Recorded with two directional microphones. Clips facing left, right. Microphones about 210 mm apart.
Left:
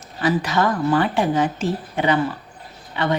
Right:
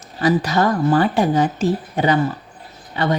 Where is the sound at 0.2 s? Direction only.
40° right (ahead or behind).